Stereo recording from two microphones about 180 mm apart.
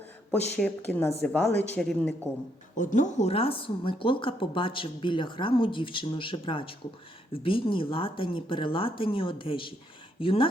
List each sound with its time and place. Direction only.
0.3 s a woman's voice: 5° left (ahead or behind)
2.7 s speech: 45° left (ahead or behind)